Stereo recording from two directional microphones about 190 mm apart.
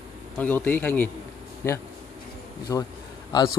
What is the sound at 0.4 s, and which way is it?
A man's voice, 10° left (ahead or behind).